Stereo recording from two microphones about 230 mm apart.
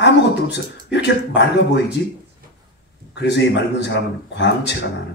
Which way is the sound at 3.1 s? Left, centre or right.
Left.